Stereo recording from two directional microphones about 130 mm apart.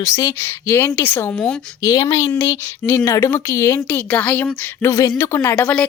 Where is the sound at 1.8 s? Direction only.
25° left (ahead or behind).